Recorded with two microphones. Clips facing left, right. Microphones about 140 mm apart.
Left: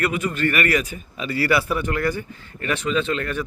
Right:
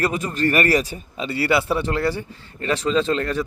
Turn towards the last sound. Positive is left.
turn(degrees=-30)  # may be behind; listen again after turning